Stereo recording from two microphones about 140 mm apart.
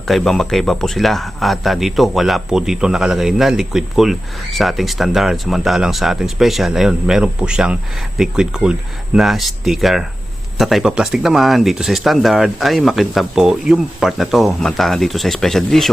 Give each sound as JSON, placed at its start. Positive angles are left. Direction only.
{"t": 0.1, "sound": "speech", "side_deg": 0}